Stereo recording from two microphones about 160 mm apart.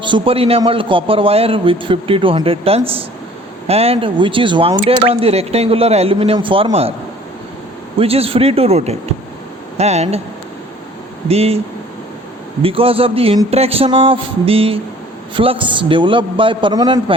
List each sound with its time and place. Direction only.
0.0 s a man's voice: 35° right (ahead or behind)
7.9 s a man's voice: 35° right (ahead or behind)
11.3 s a man's voice: 40° right (ahead or behind)
12.6 s a man's voice: 35° right (ahead or behind)